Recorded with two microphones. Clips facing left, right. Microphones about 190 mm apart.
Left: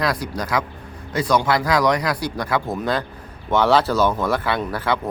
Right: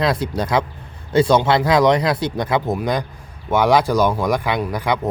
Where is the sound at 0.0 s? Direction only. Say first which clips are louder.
Right 4 dB; 25° right (ahead or behind).